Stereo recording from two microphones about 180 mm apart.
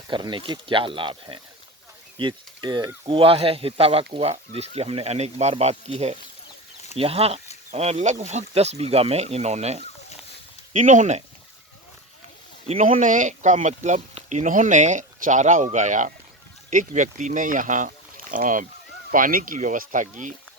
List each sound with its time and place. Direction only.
0.1 s speech: 25° right (ahead or behind); by 11.2 s 40° right (ahead or behind)
12.6 s speech: 40° right (ahead or behind)